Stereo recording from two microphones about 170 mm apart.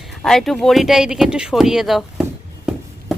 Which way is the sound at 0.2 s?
5° left (ahead or behind).